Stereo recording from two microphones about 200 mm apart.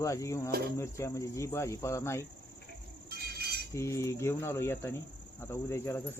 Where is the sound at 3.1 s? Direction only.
50° right (ahead or behind).